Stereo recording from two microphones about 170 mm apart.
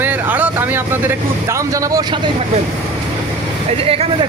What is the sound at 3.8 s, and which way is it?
Speech, 35° right (ahead or behind).